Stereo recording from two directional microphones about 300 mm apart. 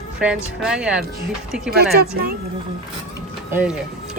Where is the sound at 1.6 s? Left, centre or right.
Right.